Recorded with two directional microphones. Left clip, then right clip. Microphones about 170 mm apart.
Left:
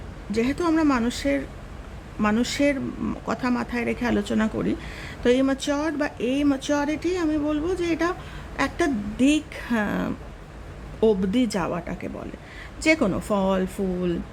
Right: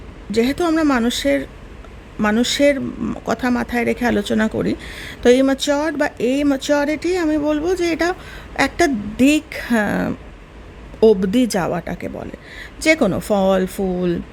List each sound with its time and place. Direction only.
0.3 s speech: 30° right (ahead or behind)